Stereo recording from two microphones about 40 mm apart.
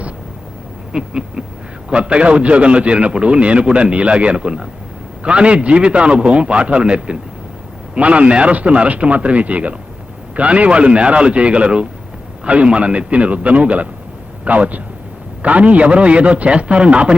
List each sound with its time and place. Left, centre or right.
0.9 s a man's voice: right